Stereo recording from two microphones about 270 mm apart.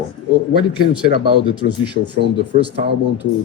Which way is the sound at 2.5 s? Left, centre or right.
Right.